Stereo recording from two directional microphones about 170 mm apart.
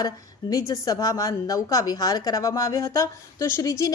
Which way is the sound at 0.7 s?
20° left (ahead or behind).